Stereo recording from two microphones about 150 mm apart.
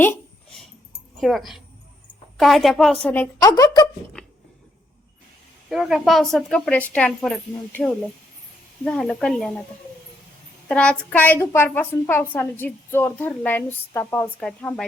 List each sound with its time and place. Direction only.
1.2 s a woman's voice: centre (ahead or behind)
3.4 s a woman's voice: 25° left (ahead or behind)
4.2 s a sound: 5° left (ahead or behind)
5.6 s a woman's voice: centre (ahead or behind)
10.7 s a woman's voice: 5° left (ahead or behind)